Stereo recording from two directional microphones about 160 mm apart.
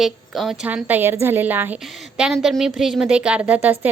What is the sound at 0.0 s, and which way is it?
A woman's voice, centre (ahead or behind).